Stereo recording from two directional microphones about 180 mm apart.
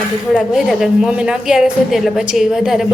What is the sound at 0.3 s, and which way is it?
A woman's voice, centre (ahead or behind).